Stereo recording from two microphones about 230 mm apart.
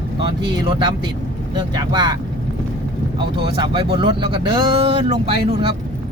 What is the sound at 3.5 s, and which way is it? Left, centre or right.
Speech, right.